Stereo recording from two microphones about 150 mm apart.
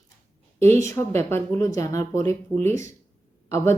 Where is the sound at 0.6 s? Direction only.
20° left (ahead or behind).